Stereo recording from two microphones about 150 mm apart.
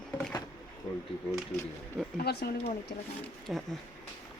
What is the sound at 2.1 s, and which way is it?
Speech, 90° left.